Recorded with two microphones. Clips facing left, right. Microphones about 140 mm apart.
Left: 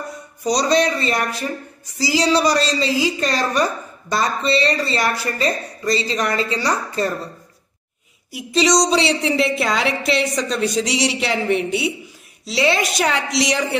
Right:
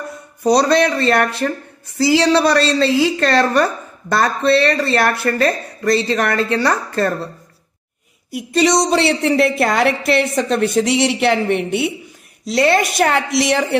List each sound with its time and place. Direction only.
0.4 s speech: 60° right (ahead or behind)
8.3 s a woman's voice: 55° right (ahead or behind)